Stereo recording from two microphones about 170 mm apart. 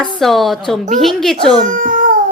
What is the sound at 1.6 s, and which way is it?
Babbling, 50° right (ahead or behind).